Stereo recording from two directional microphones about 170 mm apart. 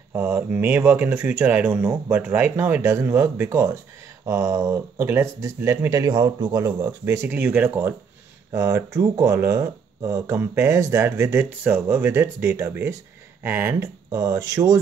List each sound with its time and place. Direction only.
0.1 s speech: 10° right (ahead or behind)